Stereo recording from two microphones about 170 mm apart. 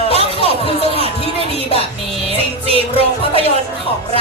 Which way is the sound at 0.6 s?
35° left (ahead or behind).